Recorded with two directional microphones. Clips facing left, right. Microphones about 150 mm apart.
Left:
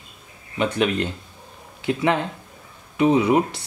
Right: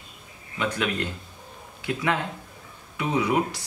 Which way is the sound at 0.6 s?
25° left (ahead or behind).